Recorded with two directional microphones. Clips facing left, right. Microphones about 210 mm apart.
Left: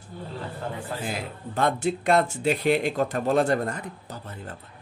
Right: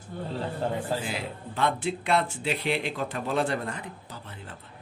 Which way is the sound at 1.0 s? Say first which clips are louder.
Left 2 dB; 45° left (ahead or behind).